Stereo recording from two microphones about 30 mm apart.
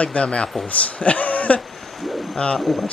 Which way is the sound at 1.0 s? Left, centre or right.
Left.